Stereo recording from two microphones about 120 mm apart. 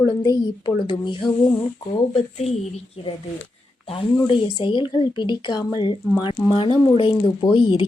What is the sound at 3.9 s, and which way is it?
A woman's voice, 50° left (ahead or behind).